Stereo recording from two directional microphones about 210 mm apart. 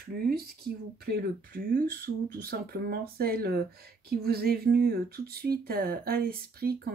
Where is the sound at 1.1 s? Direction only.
45° right (ahead or behind).